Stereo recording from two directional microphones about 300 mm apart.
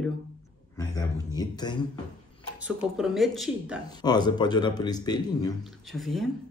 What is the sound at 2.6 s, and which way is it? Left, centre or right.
Speech, centre.